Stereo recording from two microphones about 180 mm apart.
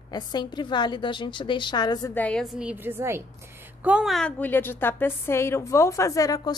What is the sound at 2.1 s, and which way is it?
A woman's voice, 5° left (ahead or behind).